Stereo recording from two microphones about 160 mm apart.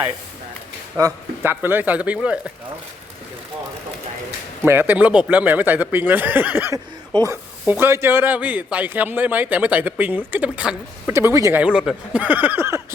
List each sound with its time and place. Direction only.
0.9 s a man's voice: 15° right (ahead or behind)
4.6 s a man's voice: 15° right (ahead or behind)
7.1 s speech: 25° right (ahead or behind)
7.6 s a man's voice: 15° right (ahead or behind)
11.6 s a man's voice: 5° right (ahead or behind)